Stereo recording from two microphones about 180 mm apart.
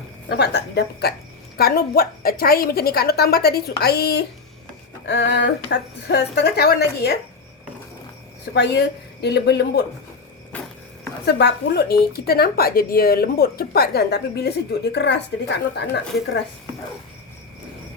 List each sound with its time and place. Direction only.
0.3 s a woman's voice: 70° left (ahead or behind)
5.0 s a woman's voice: 85° left; by 7.2 s 65° left (ahead or behind)
8.5 s a woman's voice: 70° left (ahead or behind)
10.5 s a sound: 5° left (ahead or behind)
11.3 s a woman's voice: 70° left (ahead or behind)